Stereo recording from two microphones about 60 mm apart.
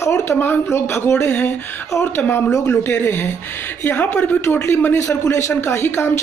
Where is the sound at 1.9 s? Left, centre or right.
Left.